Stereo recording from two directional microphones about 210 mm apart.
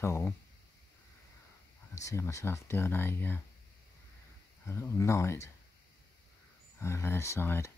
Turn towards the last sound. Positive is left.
turn(degrees=10)  # may be behind; listen again after turning